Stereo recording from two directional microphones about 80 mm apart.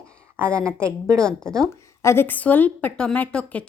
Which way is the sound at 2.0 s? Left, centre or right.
Left.